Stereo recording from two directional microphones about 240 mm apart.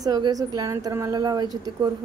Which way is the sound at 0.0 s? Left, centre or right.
Centre.